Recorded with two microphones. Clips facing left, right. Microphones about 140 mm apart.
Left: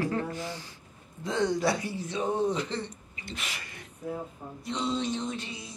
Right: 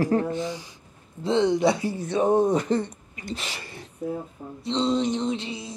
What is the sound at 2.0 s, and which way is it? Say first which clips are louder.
Speech: right 8 dB; 55° right (ahead or behind).